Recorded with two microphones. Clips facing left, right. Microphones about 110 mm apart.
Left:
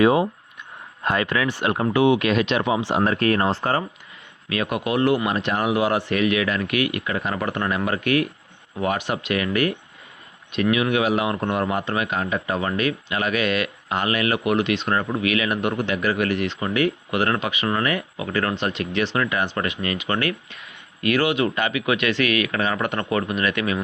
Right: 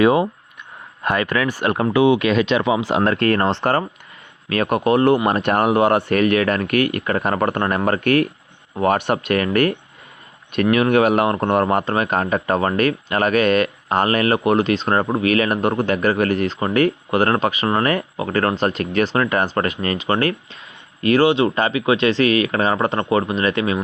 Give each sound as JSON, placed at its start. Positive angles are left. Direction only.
{"t": 0.0, "sound": "speech", "side_deg": -60}
{"t": 2.9, "sound": "speech", "side_deg": -90}
{"t": 4.4, "sound": "speech", "side_deg": -45}